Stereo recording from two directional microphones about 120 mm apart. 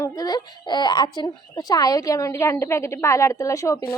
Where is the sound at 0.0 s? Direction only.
30° left (ahead or behind).